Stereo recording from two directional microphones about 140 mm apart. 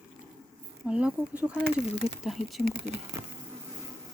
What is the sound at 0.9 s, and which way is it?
Speech, 10° right (ahead or behind).